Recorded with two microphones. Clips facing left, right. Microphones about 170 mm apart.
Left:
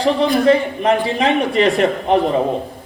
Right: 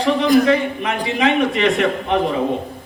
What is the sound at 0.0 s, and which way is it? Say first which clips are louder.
A man's voice: even; 35° left (ahead or behind).